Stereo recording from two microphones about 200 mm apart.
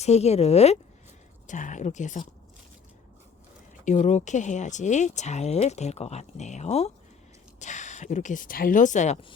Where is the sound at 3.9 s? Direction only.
35° left (ahead or behind).